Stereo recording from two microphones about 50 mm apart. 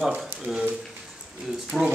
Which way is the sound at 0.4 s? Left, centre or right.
Centre.